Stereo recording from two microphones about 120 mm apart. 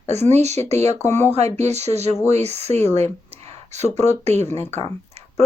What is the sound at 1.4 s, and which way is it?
Speech, 65° right (ahead or behind).